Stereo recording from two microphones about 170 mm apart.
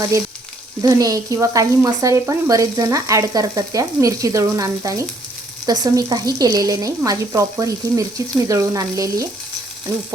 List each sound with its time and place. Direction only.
0.8 s speech: 20° right (ahead or behind)